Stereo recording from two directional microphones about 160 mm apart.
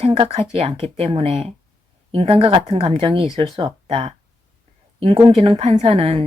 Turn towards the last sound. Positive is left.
turn(degrees=-35)  # may be behind; listen again after turning